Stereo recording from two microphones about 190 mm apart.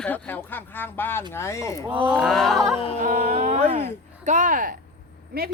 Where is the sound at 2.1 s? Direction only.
Centre (ahead or behind).